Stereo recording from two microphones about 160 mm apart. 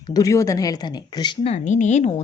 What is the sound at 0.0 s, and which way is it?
Speech, 20° left (ahead or behind).